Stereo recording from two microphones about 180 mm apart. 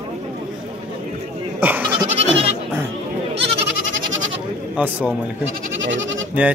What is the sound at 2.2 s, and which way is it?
Goat, 35° right (ahead or behind).